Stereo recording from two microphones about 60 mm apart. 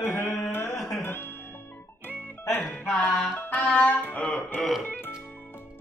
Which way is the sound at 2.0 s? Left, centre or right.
Left.